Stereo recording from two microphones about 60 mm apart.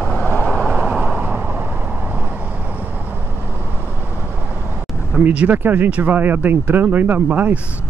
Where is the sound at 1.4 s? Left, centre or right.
Right.